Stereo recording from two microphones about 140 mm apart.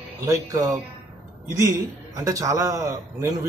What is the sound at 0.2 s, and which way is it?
Speech, 20° right (ahead or behind).